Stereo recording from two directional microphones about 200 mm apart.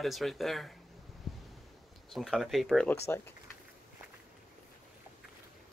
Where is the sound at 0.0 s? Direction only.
Centre (ahead or behind).